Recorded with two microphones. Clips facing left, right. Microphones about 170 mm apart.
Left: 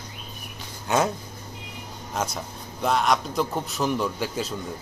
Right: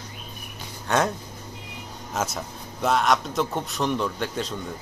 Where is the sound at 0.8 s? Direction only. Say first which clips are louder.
Even; 5° left (ahead or behind).